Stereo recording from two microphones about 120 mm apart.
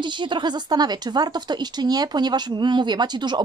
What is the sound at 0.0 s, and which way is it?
Speech, 40° right (ahead or behind).